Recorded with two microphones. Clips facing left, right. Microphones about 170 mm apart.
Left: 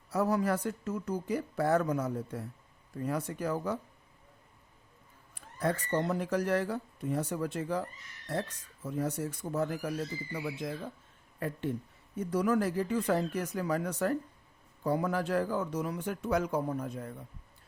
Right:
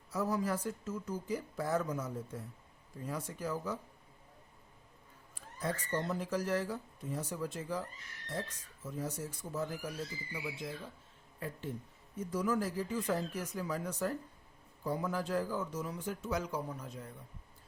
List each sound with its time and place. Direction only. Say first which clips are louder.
0.1 s speech: left 5 dB; 65° left (ahead or behind)
5.3 s speech: left 6 dB; 65° left (ahead or behind)